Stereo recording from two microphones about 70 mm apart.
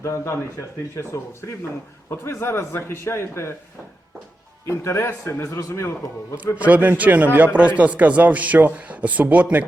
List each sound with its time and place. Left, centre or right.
0.0 s a man's voice: left
4.6 s a man's voice: left
5.4 s a man's voice: left
6.6 s a man's voice: right